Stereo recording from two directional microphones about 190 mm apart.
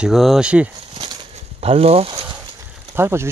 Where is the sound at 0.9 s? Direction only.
25° right (ahead or behind).